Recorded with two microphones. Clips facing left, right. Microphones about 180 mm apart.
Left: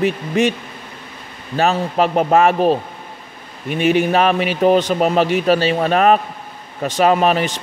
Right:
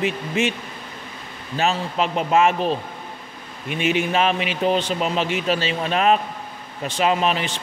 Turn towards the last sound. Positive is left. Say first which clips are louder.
# left 6 dB
turn(degrees=45)  # may be behind; listen again after turning